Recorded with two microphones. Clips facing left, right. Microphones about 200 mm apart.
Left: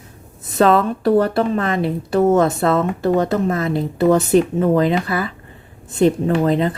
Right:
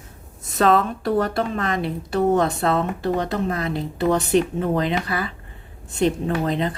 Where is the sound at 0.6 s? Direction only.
35° left (ahead or behind).